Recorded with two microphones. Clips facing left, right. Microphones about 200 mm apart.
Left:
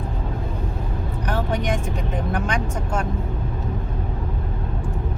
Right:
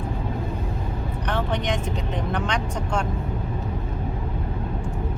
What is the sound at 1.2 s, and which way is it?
Vehicle, 10° left (ahead or behind).